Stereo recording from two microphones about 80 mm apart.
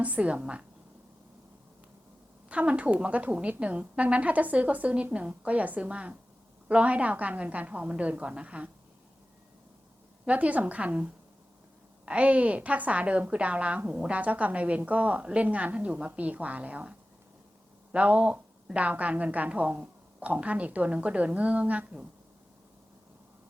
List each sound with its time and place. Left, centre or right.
0.0 s a woman's voice: centre
2.5 s a woman's voice: centre
10.2 s a woman's voice: centre
17.9 s a woman's voice: centre